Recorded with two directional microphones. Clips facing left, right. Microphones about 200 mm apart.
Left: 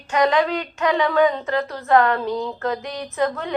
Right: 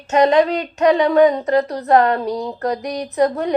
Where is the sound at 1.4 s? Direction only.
40° right (ahead or behind).